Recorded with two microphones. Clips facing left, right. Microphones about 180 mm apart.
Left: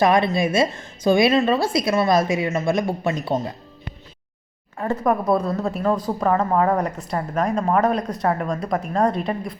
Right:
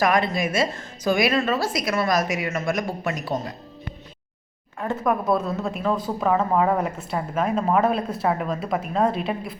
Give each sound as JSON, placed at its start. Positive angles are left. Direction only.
{"t": 0.0, "sound": "a woman's voice", "side_deg": 25}
{"t": 4.8, "sound": "a woman's voice", "side_deg": 0}